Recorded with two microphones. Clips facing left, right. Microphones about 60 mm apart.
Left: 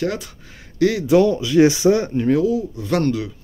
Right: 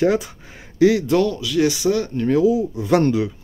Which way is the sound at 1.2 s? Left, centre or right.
Left.